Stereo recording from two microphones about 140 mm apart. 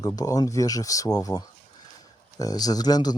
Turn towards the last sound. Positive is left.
turn(degrees=30)  # may be behind; listen again after turning